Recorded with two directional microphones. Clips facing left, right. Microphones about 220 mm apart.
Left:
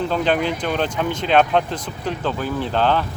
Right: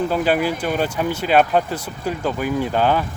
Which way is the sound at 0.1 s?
5° right (ahead or behind).